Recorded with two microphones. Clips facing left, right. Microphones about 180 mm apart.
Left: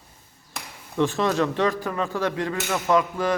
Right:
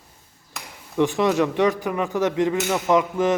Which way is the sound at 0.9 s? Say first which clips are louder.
Right 3 dB; 15° right (ahead or behind).